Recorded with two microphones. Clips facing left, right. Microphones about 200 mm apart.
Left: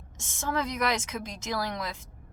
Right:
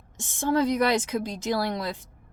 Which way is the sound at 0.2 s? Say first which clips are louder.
Right 7 dB; 30° right (ahead or behind).